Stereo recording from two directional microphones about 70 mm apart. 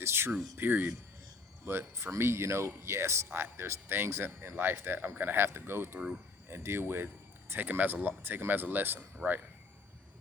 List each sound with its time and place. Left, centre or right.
0.0 s music: right
0.5 s speech: right